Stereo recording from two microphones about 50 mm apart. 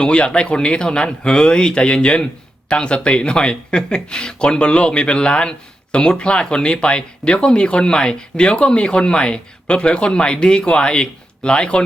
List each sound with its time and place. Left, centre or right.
0.0 s speech: centre